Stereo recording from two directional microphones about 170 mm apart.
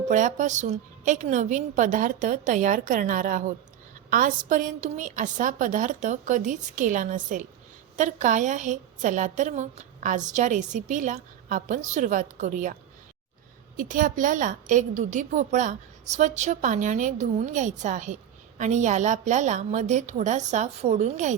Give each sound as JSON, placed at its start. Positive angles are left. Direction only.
{"t": 0.1, "sound": "a woman's voice", "side_deg": -50}
{"t": 13.7, "sound": "a woman's voice", "side_deg": -50}